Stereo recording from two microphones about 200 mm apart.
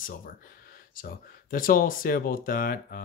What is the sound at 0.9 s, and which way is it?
Speech, 45° left (ahead or behind).